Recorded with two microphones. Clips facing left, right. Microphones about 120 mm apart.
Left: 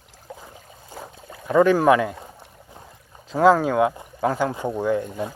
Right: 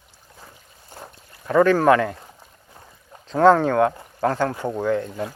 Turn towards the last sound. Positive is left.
turn(degrees=15)  # may be behind; listen again after turning